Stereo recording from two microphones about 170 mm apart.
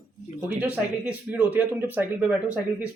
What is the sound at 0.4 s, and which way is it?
Speech, 10° right (ahead or behind).